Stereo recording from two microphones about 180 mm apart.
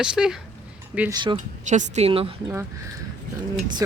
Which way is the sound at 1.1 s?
25° right (ahead or behind).